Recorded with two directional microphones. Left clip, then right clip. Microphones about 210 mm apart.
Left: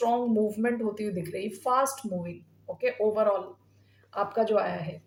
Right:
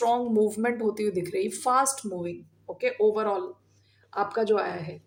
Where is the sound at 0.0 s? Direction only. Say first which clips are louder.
Right 2 dB; 40° right (ahead or behind).